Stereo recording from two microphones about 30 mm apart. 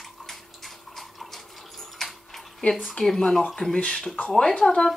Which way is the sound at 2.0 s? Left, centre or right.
Centre.